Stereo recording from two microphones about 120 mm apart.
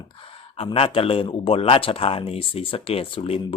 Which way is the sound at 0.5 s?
55° left (ahead or behind).